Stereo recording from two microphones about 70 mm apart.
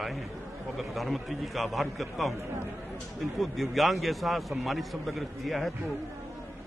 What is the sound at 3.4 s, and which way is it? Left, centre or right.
A man's voice, centre.